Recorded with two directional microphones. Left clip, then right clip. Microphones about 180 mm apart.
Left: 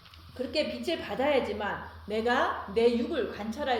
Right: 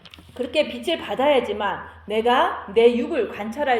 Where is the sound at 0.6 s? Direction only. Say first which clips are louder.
Right 8 dB; 30° right (ahead or behind).